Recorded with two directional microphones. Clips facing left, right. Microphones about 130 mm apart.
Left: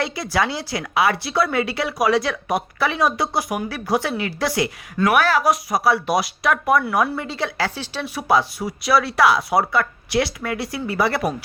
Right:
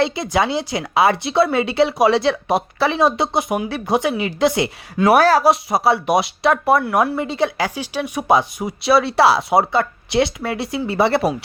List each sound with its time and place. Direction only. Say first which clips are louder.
0.0 s speech: right 4 dB; 25° right (ahead or behind)
5.0 s speech: right 5 dB; 40° right (ahead or behind)